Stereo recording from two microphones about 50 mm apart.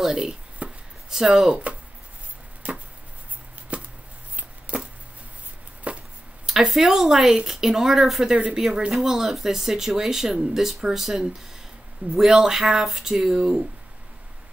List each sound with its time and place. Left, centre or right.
0.1 s speech: centre
0.6 s chopping: right
1.1 s speech: centre
1.5 s speech: right
3.7 s chopping: right
4.4 s a sound: right
5.9 s chopping: right
6.7 s speech: centre